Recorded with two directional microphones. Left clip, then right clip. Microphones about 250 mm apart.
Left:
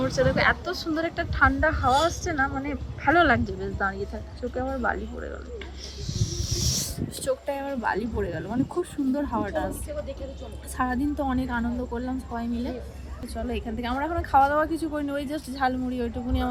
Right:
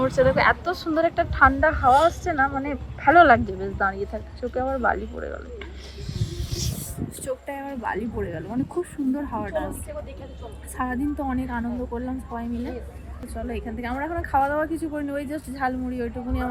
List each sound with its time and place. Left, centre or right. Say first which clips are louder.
0.2 s speech: right 3 dB; centre
6.1 s a sound: left 2 dB; centre
7.4 s a woman's voice: left 2 dB; centre
10.8 s a woman's voice: left 1 dB; centre